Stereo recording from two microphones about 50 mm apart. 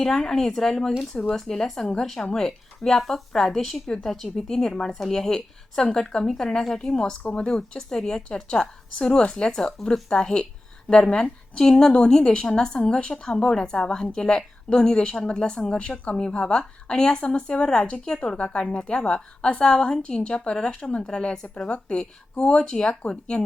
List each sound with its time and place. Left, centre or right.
0.0 s a woman's voice: centre